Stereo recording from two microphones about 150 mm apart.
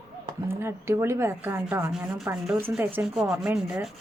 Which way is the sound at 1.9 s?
Centre (ahead or behind).